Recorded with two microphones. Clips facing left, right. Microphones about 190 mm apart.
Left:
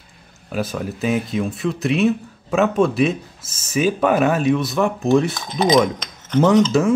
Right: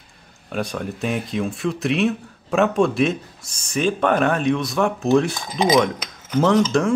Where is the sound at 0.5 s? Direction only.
5° left (ahead or behind).